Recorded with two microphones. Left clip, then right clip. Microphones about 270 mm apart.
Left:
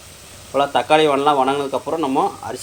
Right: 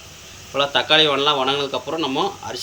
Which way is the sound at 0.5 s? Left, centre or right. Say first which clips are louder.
Left 1 dB; centre.